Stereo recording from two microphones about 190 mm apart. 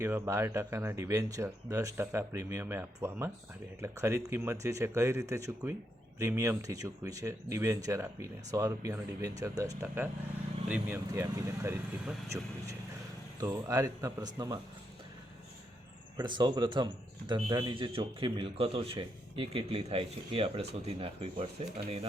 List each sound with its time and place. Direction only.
0.0 s speech: 15° right (ahead or behind)
16.1 s speech: 25° right (ahead or behind)